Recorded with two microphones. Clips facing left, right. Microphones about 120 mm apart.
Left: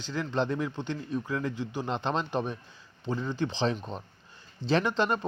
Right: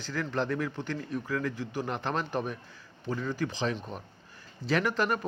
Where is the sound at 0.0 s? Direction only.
20° left (ahead or behind).